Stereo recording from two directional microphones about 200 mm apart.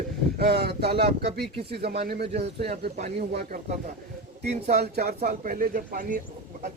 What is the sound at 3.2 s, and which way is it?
Speech, 55° right (ahead or behind).